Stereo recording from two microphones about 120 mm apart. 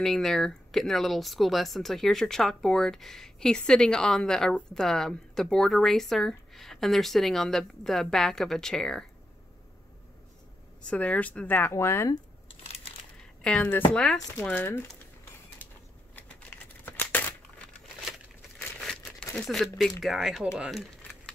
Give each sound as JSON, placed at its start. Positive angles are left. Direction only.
{"t": 0.0, "sound": "speech", "side_deg": 5}
{"t": 10.8, "sound": "speech", "side_deg": 10}
{"t": 13.4, "sound": "speech", "side_deg": 10}
{"t": 16.2, "sound": "a sound", "side_deg": 15}
{"t": 18.6, "sound": "crumpling", "side_deg": 5}
{"t": 19.3, "sound": "speech", "side_deg": 5}